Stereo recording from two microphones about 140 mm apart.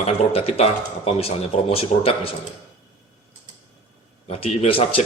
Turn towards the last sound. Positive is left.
turn(degrees=40)  # may be behind; listen again after turning